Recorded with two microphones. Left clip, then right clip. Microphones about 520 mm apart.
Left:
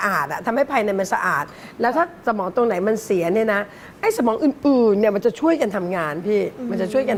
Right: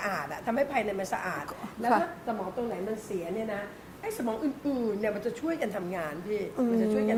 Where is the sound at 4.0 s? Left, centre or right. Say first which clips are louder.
Left 14 dB; left.